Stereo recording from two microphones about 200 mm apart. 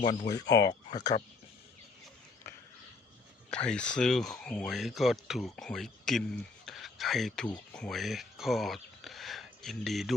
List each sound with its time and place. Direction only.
0.0 s speech: 20° left (ahead or behind)
3.5 s speech: 5° left (ahead or behind)